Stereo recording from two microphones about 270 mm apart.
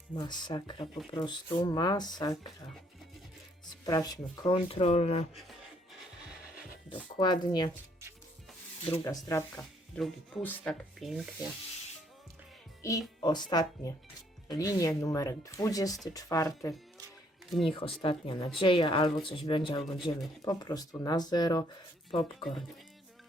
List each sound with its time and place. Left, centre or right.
0.2 s speech: centre
3.7 s speech: centre
5.3 s speech: centre
6.6 s a sound: centre
7.2 s speech: centre
8.9 s speech: centre
12.8 s speech: centre
17.7 s speech: centre